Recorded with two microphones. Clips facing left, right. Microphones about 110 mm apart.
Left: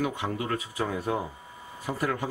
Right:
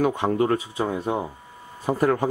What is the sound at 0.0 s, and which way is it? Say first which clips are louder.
Speech: right 9 dB; 40° right (ahead or behind).